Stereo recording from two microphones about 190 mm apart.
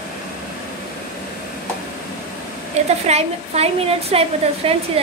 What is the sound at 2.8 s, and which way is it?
A woman's voice, 35° right (ahead or behind).